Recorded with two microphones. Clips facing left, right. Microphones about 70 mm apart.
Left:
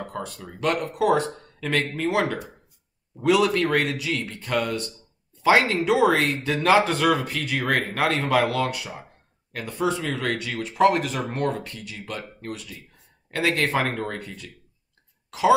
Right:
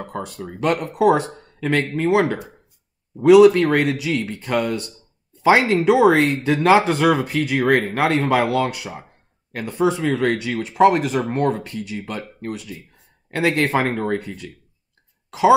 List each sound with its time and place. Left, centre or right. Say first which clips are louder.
0.2 s speech: right 5 dB; right